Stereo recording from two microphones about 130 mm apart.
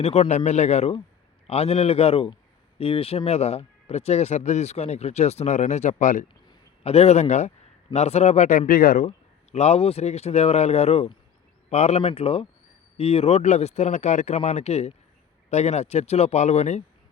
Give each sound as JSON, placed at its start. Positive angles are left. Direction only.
{"t": 0.0, "sound": "speech", "side_deg": 60}
{"t": 6.8, "sound": "speech", "side_deg": 55}
{"t": 9.0, "sound": "speech", "side_deg": 60}